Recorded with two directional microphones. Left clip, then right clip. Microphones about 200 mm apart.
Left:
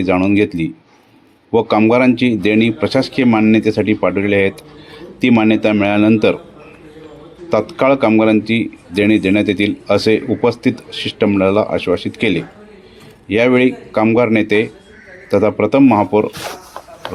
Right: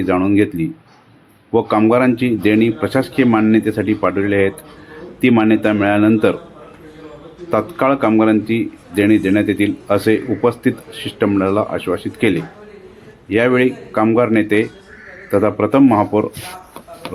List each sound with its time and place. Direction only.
0.0 s speech: 30° left (ahead or behind)
7.5 s speech: 30° left (ahead or behind)